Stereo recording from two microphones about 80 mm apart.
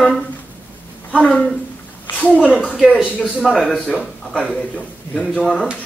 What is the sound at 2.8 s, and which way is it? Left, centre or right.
Speech, centre.